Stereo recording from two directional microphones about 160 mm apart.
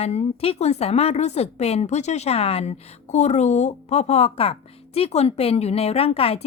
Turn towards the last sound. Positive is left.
turn(degrees=35)  # may be behind; listen again after turning